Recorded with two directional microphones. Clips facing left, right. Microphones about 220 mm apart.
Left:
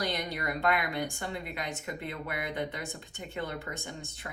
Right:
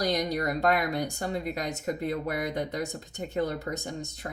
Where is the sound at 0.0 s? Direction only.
40° right (ahead or behind).